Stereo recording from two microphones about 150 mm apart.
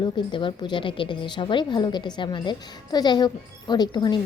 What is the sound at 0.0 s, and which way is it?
A woman's voice, 35° left (ahead or behind).